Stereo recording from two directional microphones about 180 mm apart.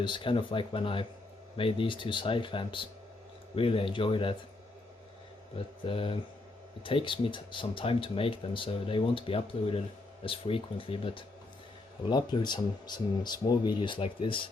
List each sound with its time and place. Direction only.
0.0 s speech: 25° left (ahead or behind)
5.8 s speech: 30° left (ahead or behind)